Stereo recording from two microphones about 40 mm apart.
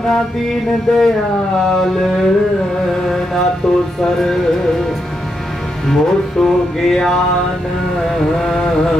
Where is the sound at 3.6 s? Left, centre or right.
Centre.